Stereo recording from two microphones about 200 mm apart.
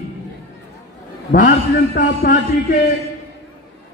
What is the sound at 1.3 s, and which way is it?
A man's voice, 40° left (ahead or behind).